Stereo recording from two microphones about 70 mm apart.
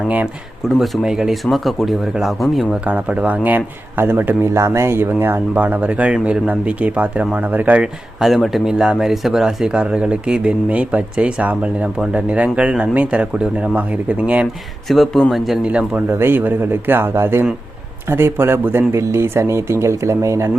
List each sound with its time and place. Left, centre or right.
0.7 s speech: centre
2.8 s a man's voice: centre
4.4 s a man's voice: right
8.2 s speech: centre
14.8 s speech: centre
15.6 s speech: centre
16.0 s speech: right